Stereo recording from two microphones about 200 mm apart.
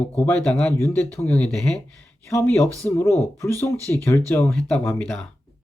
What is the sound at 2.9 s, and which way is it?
Speech, 10° left (ahead or behind).